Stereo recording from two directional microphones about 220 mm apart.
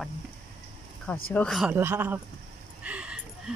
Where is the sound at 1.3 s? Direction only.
Centre (ahead or behind).